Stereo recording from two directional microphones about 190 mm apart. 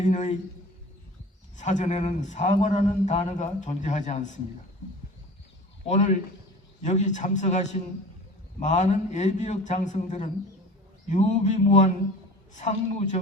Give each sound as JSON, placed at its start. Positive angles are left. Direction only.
{"t": 0.0, "sound": "a man's voice", "side_deg": 40}
{"t": 1.5, "sound": "a man's voice", "side_deg": 40}
{"t": 5.9, "sound": "a man's voice", "side_deg": 35}